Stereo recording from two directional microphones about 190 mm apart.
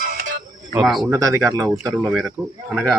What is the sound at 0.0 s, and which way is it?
Music, 45° right (ahead or behind).